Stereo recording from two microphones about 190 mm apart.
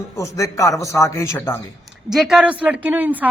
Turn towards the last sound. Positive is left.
turn(degrees=-10)  # may be behind; listen again after turning